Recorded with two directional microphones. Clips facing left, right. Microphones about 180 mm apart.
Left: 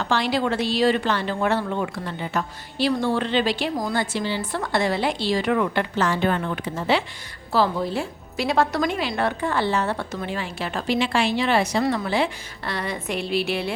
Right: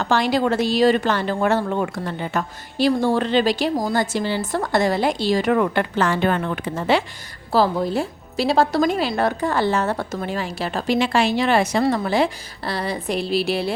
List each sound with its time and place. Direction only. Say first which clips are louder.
0.0 s speech: right 3 dB; 45° right (ahead or behind)
7.5 s speech: right 3 dB; 40° right (ahead or behind)